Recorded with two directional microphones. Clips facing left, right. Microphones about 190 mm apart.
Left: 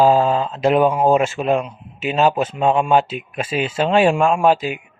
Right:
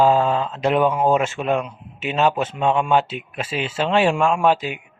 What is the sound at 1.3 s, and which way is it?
A man's voice, 35° left (ahead or behind).